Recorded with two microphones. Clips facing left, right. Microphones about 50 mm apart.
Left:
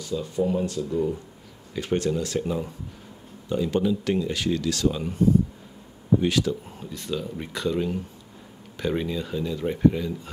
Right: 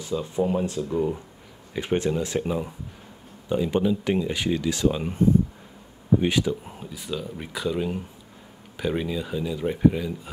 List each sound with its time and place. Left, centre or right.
0.0 s speech: right
6.2 s speech: centre